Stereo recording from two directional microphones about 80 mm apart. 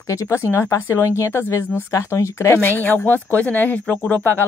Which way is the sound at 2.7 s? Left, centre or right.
Left.